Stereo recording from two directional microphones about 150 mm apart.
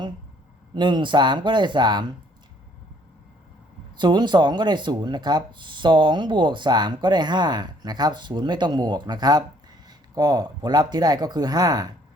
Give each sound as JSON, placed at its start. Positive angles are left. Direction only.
{"t": 0.7, "sound": "speech", "side_deg": -30}
{"t": 3.9, "sound": "speech", "side_deg": -30}